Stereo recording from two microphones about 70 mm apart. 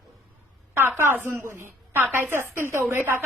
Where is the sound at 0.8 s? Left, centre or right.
Right.